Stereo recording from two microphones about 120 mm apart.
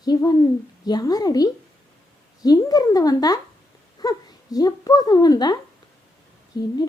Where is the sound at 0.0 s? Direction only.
30° left (ahead or behind).